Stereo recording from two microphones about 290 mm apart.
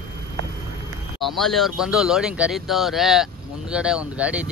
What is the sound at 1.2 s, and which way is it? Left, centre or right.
Speech, centre.